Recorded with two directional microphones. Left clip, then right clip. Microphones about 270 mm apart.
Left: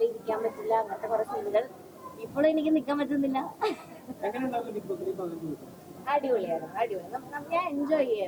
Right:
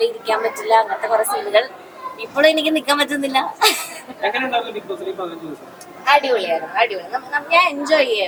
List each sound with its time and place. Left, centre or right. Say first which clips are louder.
0.0 s a woman's voice: right 10 dB; centre
4.9 s speech: right 7 dB; right
6.1 s a woman's voice: right 12 dB; centre